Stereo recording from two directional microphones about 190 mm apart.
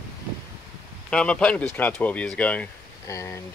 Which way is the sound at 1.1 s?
5° left (ahead or behind).